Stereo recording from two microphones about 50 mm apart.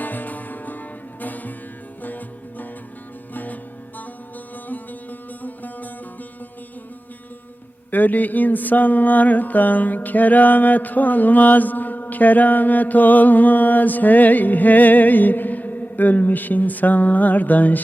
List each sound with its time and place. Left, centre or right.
0.0 s music: left
5.4 s music: left
7.9 s mantra: left